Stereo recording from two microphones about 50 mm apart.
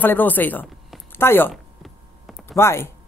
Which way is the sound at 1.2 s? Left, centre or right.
Left.